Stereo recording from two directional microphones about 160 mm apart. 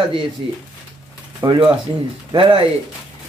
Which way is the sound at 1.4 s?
25° right (ahead or behind).